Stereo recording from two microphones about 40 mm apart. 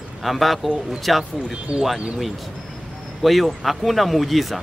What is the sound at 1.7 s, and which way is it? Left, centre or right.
Speech, right.